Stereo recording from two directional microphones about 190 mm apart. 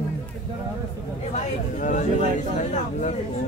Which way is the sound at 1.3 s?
40° left (ahead or behind).